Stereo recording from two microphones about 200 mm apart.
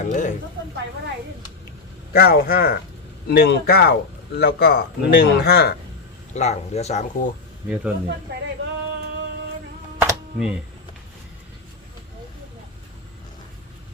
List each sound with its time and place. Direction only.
0.0 s speech: 40° left (ahead or behind)
2.1 s speech: 45° left (ahead or behind)
6.3 s speech: 35° left (ahead or behind)
8.3 s music: 55° right (ahead or behind)
10.0 s a sound: 10° right (ahead or behind)